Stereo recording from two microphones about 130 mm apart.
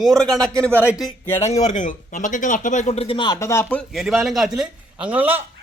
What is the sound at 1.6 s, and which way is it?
Speech, 75° left (ahead or behind).